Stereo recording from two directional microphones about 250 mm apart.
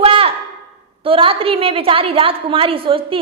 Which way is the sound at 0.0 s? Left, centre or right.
Right.